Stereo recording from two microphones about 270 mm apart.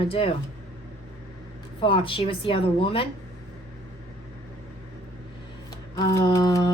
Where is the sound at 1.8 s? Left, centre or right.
Centre.